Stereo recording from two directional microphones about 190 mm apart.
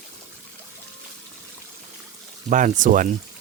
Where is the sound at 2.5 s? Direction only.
40° right (ahead or behind).